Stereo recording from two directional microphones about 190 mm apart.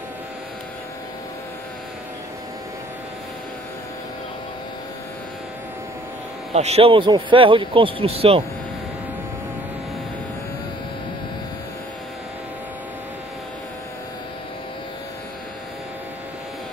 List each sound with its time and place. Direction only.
6.5 s speech: 35° right (ahead or behind)